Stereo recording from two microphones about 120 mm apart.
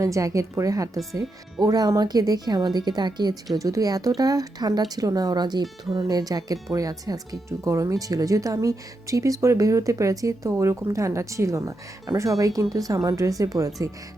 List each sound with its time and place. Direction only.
0.0 s speech: 25° right (ahead or behind)